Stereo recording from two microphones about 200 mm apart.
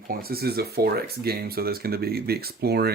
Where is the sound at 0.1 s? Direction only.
50° right (ahead or behind).